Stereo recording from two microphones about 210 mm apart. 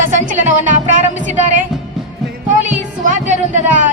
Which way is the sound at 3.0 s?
35° right (ahead or behind).